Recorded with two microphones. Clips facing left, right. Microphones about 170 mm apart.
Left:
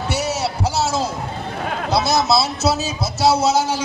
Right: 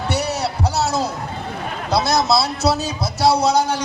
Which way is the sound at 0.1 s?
Centre (ahead or behind).